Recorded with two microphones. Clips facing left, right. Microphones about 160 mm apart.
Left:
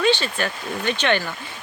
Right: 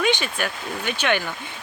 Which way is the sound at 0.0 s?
15° right (ahead or behind).